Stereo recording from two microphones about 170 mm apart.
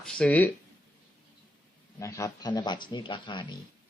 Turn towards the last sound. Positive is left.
turn(degrees=25)  # may be behind; listen again after turning